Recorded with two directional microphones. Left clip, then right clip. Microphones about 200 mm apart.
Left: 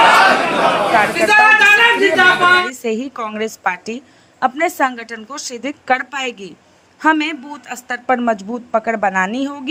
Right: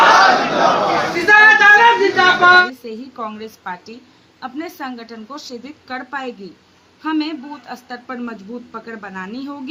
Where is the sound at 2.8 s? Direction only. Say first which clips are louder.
Left 7 dB; 45° left (ahead or behind).